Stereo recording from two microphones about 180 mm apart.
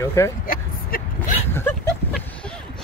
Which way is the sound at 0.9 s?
55° left (ahead or behind).